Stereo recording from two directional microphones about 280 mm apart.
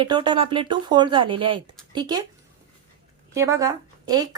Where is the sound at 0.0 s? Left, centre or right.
Centre.